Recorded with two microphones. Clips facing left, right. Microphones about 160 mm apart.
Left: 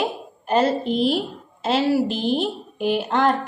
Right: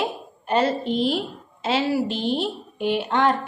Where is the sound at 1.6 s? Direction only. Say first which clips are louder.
Left 2 dB; 40° left (ahead or behind).